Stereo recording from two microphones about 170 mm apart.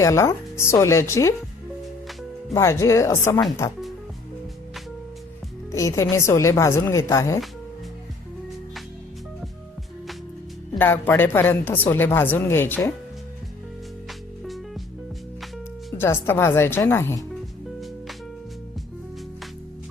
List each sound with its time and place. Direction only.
0.0 s speech: 15° left (ahead or behind)
2.5 s speech: 15° left (ahead or behind)
5.7 s speech: 15° left (ahead or behind)
10.8 s speech: 10° left (ahead or behind)
16.0 s speech: 15° left (ahead or behind)